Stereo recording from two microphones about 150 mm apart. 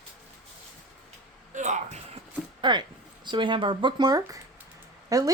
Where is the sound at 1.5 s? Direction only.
55° right (ahead or behind).